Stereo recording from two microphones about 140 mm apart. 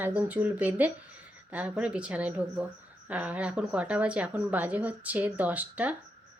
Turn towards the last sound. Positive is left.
turn(degrees=-10)  # may be behind; listen again after turning